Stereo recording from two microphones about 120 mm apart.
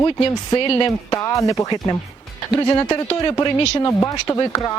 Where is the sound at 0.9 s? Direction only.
25° left (ahead or behind).